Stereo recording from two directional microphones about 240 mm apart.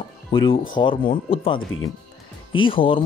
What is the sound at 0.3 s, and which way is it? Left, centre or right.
Speech, centre.